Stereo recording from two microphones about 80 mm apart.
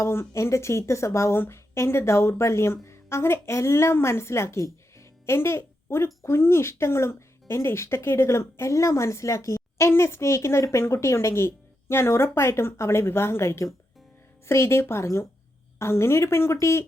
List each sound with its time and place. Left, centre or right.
0.0 s speech: left